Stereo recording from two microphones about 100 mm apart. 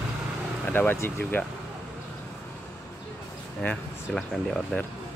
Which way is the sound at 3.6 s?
5° left (ahead or behind).